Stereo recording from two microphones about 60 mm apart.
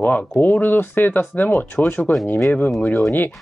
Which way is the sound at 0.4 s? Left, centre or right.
Left.